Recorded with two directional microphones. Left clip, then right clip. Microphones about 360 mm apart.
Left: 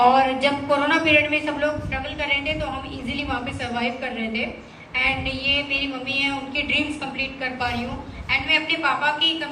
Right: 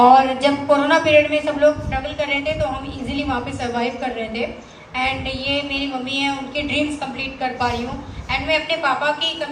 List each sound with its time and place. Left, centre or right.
0.0 s a woman's voice: right